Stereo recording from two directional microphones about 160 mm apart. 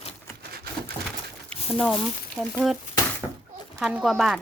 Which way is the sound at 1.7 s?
Centre (ahead or behind).